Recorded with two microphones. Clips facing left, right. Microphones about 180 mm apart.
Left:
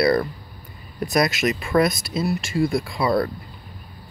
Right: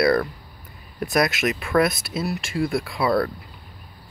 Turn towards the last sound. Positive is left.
turn(degrees=-5)  # may be behind; listen again after turning